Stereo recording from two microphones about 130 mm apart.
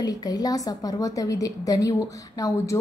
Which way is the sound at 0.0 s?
30° left (ahead or behind).